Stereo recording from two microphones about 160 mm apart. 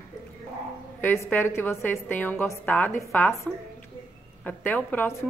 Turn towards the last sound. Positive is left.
turn(degrees=10)  # may be behind; listen again after turning